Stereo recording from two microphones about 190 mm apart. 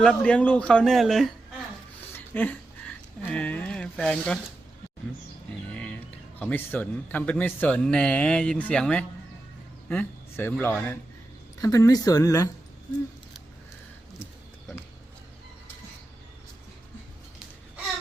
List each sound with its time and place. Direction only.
0.0 s speech: 5° left (ahead or behind)
2.0 s a sound: 10° left (ahead or behind)
5.7 s music: 5° left (ahead or behind)
6.4 s a man's voice: 10° left (ahead or behind)